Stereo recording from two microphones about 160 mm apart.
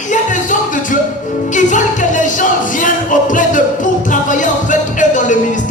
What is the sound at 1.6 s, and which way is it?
Music, 50° left (ahead or behind).